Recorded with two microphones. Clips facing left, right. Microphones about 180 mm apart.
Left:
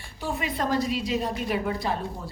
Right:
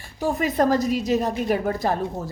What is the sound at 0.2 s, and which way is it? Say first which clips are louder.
A woman's voice: right 8 dB; 40° right (ahead or behind).